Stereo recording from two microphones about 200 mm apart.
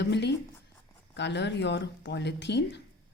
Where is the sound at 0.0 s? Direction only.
60° left (ahead or behind).